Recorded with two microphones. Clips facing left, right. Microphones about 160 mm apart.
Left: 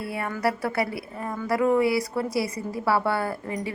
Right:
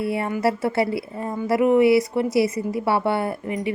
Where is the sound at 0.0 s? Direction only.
25° right (ahead or behind).